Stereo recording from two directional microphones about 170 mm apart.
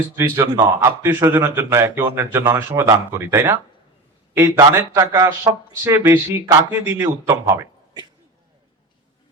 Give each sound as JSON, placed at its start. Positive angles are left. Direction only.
{"t": 0.2, "sound": "speech", "side_deg": -15}